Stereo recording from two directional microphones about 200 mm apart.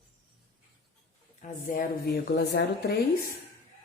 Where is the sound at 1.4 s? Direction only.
40° left (ahead or behind).